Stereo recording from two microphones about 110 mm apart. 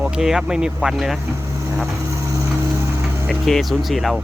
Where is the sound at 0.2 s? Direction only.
5° right (ahead or behind).